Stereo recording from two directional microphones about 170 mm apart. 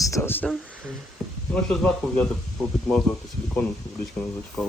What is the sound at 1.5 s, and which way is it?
Speech, 5° left (ahead or behind).